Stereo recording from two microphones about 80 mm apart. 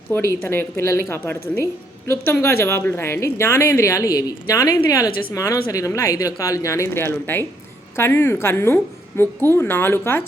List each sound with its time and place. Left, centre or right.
0.1 s a woman's voice: left